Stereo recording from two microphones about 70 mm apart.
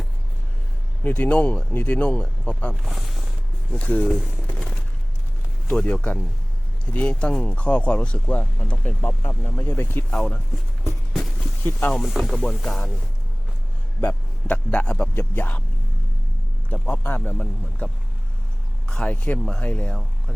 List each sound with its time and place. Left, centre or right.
1.0 s speech: left
2.7 s speech: centre
3.7 s speech: left
4.5 s a sound: centre
5.6 s speech: centre
11.1 s a sound: centre
11.6 s speech: left
11.9 s speech: centre
14.0 s speech: left
16.6 s speech: left
18.9 s speech: centre